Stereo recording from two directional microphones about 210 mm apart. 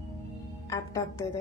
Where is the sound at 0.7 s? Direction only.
15° left (ahead or behind).